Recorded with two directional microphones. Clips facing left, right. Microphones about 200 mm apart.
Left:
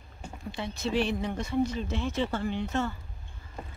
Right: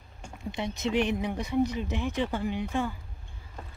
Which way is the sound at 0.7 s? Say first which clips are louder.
Right 1 dB; 20° right (ahead or behind).